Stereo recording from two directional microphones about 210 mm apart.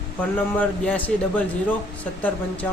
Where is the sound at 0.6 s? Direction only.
5° left (ahead or behind).